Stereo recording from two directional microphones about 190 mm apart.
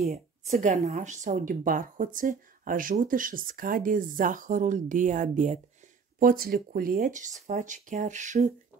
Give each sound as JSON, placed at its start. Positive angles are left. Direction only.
{"t": 0.5, "sound": "speech", "side_deg": -40}